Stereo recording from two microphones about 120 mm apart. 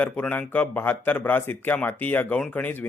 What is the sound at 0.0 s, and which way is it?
Speech, 10° left (ahead or behind).